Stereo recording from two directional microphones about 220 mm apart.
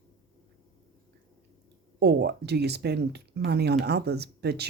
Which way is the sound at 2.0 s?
50° right (ahead or behind).